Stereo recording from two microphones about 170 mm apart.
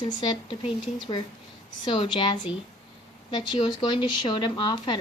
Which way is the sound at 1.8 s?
30° left (ahead or behind).